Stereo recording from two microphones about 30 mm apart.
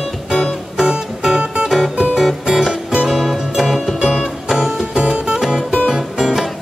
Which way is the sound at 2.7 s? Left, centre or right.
Right.